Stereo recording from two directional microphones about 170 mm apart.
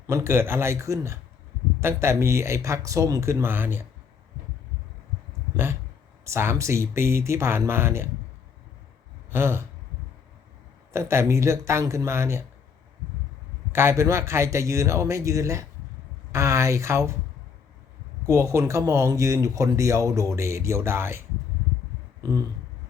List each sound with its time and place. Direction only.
0.1 s speech: 15° right (ahead or behind)
6.2 s speech: 15° right (ahead or behind)
9.3 s speech: 15° right (ahead or behind)
10.9 s speech: 15° right (ahead or behind)
13.7 s speech: 15° right (ahead or behind)
18.3 s speech: 15° right (ahead or behind)